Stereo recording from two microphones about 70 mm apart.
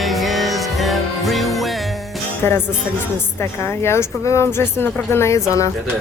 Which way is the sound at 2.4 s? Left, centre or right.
Left.